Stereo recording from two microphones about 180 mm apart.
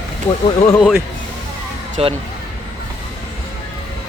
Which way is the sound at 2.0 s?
35° right (ahead or behind).